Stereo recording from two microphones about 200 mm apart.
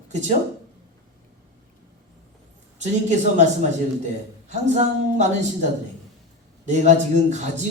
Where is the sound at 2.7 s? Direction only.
35° right (ahead or behind).